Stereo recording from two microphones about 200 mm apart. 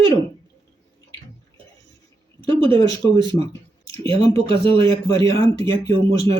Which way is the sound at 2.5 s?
25° right (ahead or behind).